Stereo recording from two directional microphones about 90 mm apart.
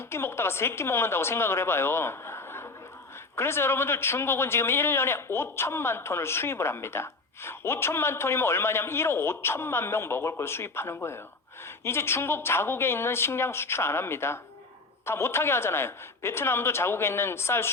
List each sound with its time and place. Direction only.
0.1 s speech: 25° left (ahead or behind)